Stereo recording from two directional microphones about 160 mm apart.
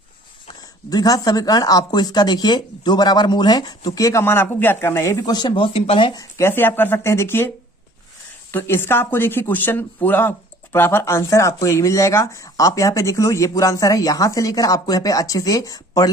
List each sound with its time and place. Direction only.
0.4 s speech: 25° left (ahead or behind)
6.3 s speech: 15° left (ahead or behind)
8.5 s speech: 15° left (ahead or behind)